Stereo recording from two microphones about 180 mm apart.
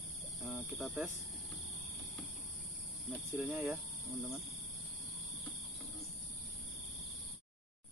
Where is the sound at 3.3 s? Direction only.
15° right (ahead or behind).